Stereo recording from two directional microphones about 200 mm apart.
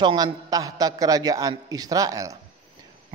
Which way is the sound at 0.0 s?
20° right (ahead or behind).